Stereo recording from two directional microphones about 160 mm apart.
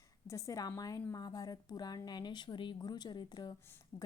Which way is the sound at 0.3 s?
20° left (ahead or behind).